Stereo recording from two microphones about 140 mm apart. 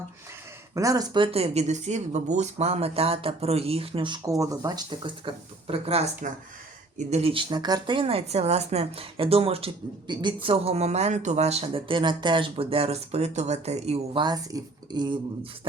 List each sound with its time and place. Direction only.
0.7 s speech: 25° right (ahead or behind)
1.1 s speech: 40° right (ahead or behind)
7.1 s speech: 45° right (ahead or behind)
14.2 s speech: 30° right (ahead or behind)